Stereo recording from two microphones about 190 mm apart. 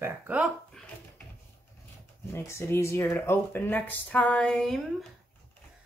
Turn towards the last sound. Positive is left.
turn(degrees=5)  # may be behind; listen again after turning